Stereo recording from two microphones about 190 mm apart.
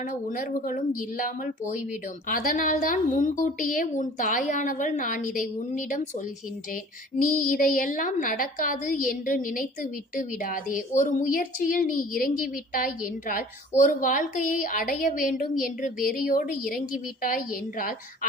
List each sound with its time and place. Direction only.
0.0 s a woman's voice: 45° left (ahead or behind)